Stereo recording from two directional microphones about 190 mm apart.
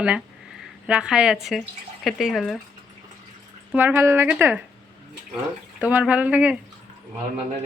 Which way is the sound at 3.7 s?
10° right (ahead or behind).